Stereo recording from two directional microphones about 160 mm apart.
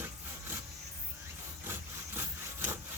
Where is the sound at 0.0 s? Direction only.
15° right (ahead or behind).